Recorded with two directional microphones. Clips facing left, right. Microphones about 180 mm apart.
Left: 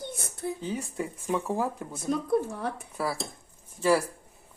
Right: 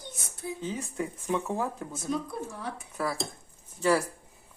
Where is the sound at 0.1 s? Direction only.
60° left (ahead or behind).